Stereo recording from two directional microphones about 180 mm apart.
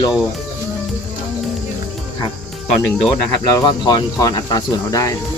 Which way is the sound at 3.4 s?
25° left (ahead or behind).